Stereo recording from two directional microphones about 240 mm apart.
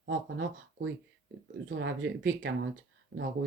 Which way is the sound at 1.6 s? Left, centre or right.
Right.